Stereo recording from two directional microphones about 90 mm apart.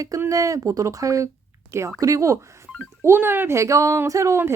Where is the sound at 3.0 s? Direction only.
25° right (ahead or behind).